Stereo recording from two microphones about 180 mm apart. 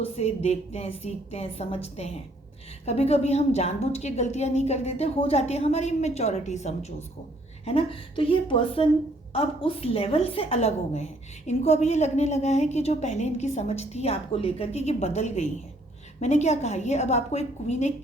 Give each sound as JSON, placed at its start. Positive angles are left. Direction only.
{"t": 0.0, "sound": "a woman's voice", "side_deg": 35}